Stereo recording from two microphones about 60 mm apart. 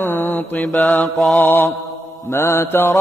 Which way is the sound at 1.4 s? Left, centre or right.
Left.